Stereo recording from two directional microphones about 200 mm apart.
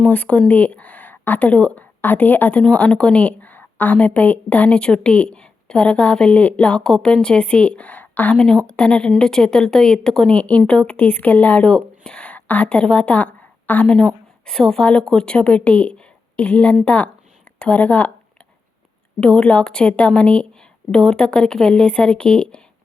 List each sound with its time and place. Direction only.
0.0 s a woman's voice: 5° left (ahead or behind)
19.2 s speech: 5° left (ahead or behind)